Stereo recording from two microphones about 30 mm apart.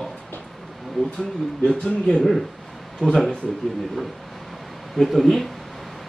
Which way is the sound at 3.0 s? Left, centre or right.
Left.